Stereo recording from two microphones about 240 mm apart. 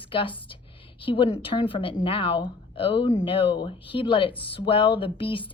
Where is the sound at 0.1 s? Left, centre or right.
Left.